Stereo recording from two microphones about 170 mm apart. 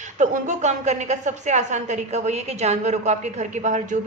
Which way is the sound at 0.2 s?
45° right (ahead or behind).